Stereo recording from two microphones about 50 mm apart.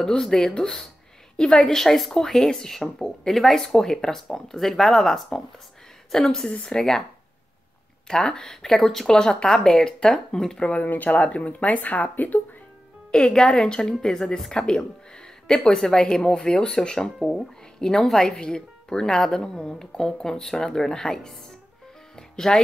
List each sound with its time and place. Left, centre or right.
0.0 s speech: centre
8.1 s speech: centre
10.7 s speech: left
13.1 s speech: centre
17.2 s speech: centre
22.1 s music: centre